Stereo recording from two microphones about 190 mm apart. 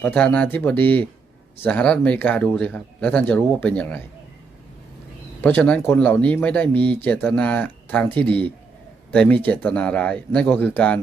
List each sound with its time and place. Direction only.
0.0 s speech: 5° left (ahead or behind)
5.4 s speech: 10° left (ahead or behind)